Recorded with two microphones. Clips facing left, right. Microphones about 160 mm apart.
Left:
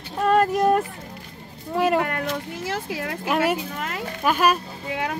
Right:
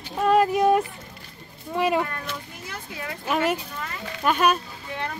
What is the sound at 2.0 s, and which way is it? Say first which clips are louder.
Speech: left 5 dB; 80° left.